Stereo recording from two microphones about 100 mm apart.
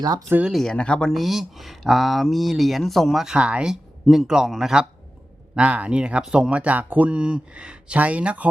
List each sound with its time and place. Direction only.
0.0 s speech: 40° right (ahead or behind)
0.4 s speech: centre (ahead or behind); by 8.4 s 15° right (ahead or behind)